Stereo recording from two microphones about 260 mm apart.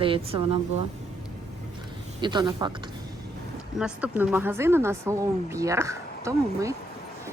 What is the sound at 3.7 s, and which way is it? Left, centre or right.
Speech, centre.